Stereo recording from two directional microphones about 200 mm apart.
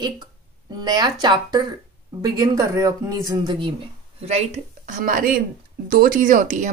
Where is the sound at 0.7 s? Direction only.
20° right (ahead or behind).